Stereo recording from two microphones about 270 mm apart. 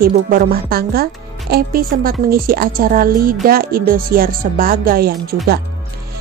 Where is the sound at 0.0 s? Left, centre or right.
Right.